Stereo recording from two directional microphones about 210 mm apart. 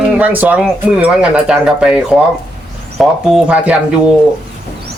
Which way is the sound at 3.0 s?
5° right (ahead or behind).